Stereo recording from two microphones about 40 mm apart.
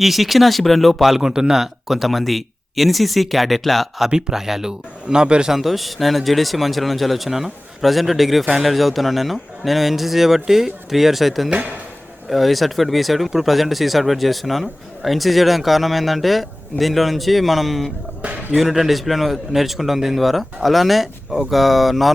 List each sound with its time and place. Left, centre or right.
0.0 s speech: centre
1.2 s speech: centre
5.0 s a man's voice: right
5.5 s speech: centre